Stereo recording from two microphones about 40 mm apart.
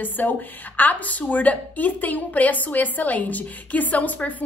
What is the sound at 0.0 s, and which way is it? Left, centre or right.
A woman's voice, left.